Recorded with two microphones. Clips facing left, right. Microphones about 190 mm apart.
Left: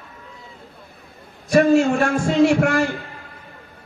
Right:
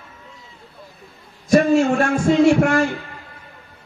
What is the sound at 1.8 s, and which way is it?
A man's voice, 55° right (ahead or behind).